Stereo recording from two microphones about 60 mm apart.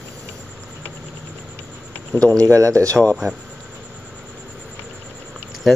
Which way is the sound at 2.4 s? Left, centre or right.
Right.